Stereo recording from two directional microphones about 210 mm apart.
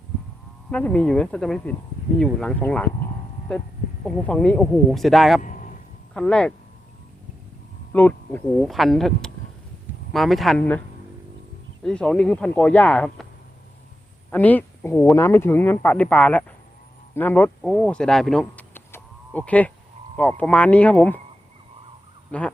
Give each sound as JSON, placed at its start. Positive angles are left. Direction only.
{"t": 0.7, "sound": "speech", "side_deg": 5}
{"t": 5.4, "sound": "a sound", "side_deg": 40}
{"t": 6.1, "sound": "speech", "side_deg": 5}
{"t": 7.9, "sound": "speech", "side_deg": 10}
{"t": 11.8, "sound": "speech", "side_deg": 5}
{"t": 14.3, "sound": "speech", "side_deg": 10}
{"t": 22.3, "sound": "goose", "side_deg": 5}